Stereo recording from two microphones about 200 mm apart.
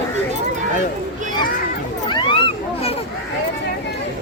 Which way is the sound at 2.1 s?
25° left (ahead or behind).